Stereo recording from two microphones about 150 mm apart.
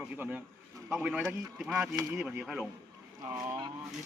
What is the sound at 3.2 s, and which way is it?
Speech, 20° right (ahead or behind).